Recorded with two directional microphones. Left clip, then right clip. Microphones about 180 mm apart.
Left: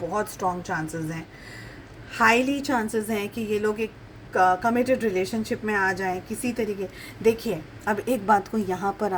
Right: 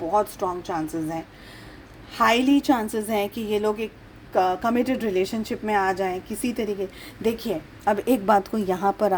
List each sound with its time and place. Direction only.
0.2 s a woman's voice: 45° right (ahead or behind)
2.1 s a woman's voice: 45° right (ahead or behind)